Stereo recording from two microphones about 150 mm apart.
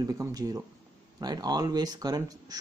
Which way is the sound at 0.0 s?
25° right (ahead or behind).